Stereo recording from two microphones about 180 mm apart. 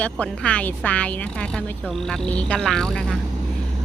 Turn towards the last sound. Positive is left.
turn(degrees=5)  # may be behind; listen again after turning